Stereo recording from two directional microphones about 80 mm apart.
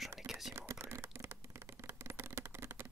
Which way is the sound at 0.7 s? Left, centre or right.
Right.